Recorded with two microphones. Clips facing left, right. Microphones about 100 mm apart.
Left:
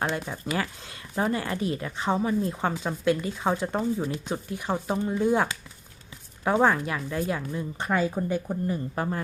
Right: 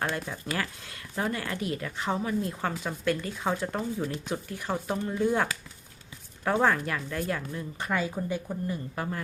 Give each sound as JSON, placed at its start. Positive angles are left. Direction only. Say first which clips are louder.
{"t": 0.0, "sound": "speech", "louder": "left 3 dB", "side_deg": 20}
{"t": 7.9, "sound": "a woman's voice", "louder": "left 4 dB", "side_deg": 40}